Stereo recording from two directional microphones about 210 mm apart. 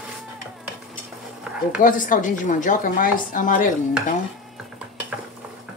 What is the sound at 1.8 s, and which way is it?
A woman's voice, 40° left (ahead or behind).